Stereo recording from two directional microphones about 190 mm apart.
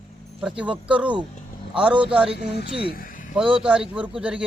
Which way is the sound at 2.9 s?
45° left (ahead or behind).